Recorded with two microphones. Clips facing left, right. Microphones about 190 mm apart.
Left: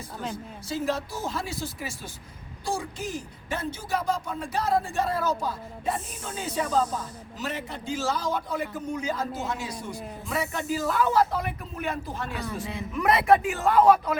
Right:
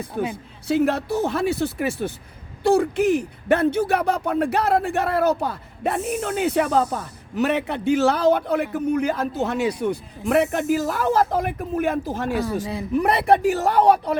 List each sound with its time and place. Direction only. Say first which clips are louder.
0.2 s a man's voice: right 8 dB; 65° right (ahead or behind); by 14.2 s 35° right (ahead or behind)